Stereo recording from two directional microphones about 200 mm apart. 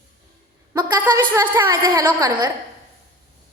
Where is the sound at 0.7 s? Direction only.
20° right (ahead or behind).